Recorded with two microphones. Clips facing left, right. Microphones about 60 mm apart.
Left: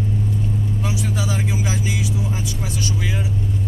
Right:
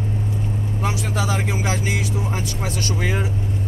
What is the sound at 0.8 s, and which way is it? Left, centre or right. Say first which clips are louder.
Speech: right 4 dB; right.